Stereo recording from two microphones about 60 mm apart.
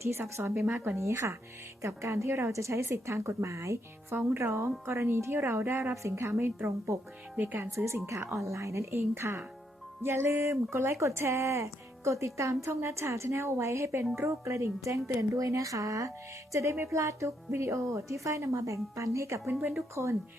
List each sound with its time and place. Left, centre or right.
0.0 s a woman's voice: right
4.1 s a woman's voice: right
6.3 s a woman's voice: right
7.3 s a woman's voice: right